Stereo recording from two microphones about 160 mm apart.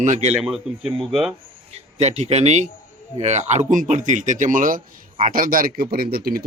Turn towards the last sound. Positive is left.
turn(degrees=-70)  # may be behind; listen again after turning